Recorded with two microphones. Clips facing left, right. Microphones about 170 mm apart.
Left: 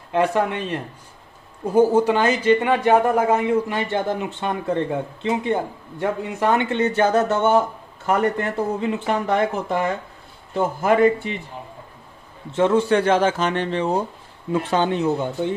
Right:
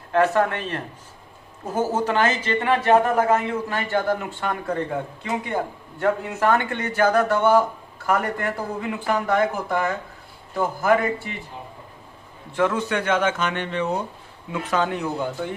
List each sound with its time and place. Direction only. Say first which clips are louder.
0.1 s speech: even; 15° left (ahead or behind)
2.0 s speech: left 4 dB; 10° left (ahead or behind)
5.9 s speech: right 1 dB; 20° left (ahead or behind)
12.5 s a man's voice: left 5 dB; 30° left (ahead or behind)